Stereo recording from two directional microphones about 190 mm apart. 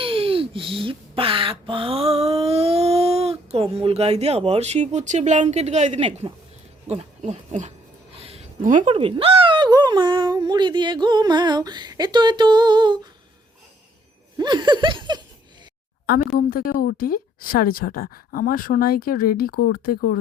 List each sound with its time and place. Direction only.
0.0 s speech: 30° right (ahead or behind)
8.1 s a sound: 30° right (ahead or behind)
8.8 s speech: 25° right (ahead or behind)
14.3 s speech: 25° right (ahead or behind)
16.0 s a woman's voice: 50° left (ahead or behind)